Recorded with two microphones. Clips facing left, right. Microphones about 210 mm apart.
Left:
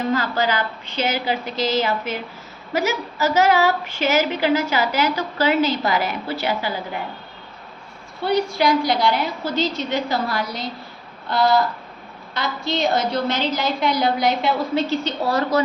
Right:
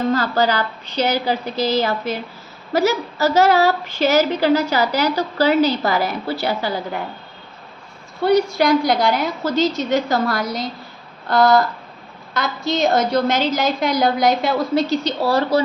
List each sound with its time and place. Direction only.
0.1 s speech: 40° right (ahead or behind)
8.2 s a woman's voice: 45° right (ahead or behind)